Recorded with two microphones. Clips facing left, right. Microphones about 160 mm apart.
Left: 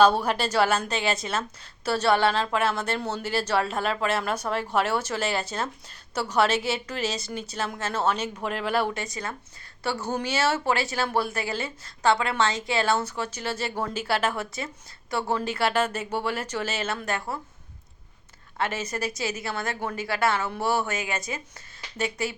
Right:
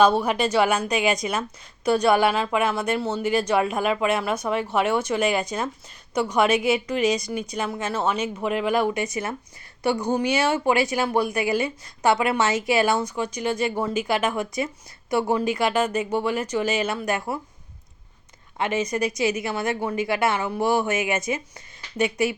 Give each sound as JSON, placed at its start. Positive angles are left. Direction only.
{"t": 0.0, "sound": "speech", "side_deg": -10}
{"t": 18.5, "sound": "speech", "side_deg": -15}